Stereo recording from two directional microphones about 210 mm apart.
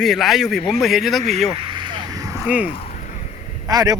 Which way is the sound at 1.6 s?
20° right (ahead or behind).